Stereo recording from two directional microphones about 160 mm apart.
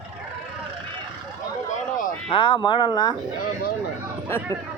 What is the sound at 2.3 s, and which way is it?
Speech, 30° left (ahead or behind).